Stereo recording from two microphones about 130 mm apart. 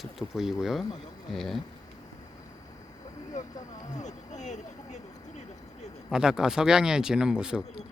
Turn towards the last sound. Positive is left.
turn(degrees=-5)  # may be behind; listen again after turning